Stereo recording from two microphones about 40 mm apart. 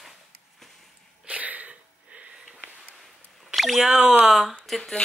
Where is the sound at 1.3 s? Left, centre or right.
Right.